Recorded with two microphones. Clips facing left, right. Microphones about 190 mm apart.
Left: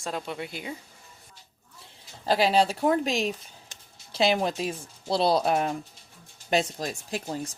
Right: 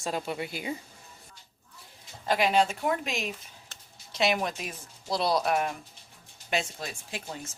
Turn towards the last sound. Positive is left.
turn(degrees=40)  # may be behind; listen again after turning